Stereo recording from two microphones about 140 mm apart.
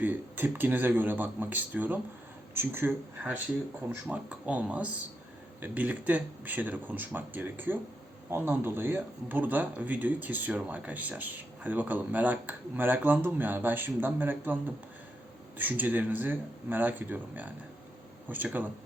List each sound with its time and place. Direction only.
0.0 s speech: 15° right (ahead or behind)